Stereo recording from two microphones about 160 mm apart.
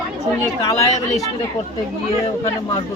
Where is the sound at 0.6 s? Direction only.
20° left (ahead or behind).